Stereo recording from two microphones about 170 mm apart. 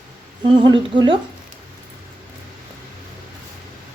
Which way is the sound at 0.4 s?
25° right (ahead or behind).